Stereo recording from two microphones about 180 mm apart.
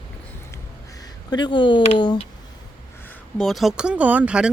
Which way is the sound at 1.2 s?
25° left (ahead or behind).